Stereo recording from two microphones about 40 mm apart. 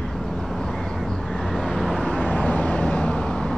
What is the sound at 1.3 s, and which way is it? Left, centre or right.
Vehicle, centre.